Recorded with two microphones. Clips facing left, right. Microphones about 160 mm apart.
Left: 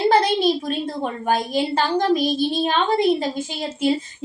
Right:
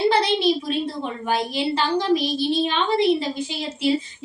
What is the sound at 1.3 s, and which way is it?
A woman's voice, 45° left (ahead or behind).